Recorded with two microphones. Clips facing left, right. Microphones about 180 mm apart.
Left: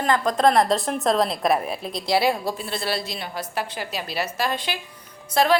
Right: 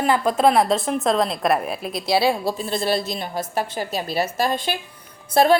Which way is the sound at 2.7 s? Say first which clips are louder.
Right 5 dB; 45° right (ahead or behind).